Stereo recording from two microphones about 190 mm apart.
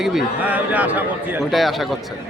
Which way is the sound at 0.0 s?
Centre (ahead or behind).